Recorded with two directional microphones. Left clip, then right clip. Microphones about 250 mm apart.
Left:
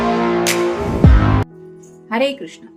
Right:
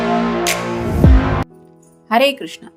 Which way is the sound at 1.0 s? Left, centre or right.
Centre.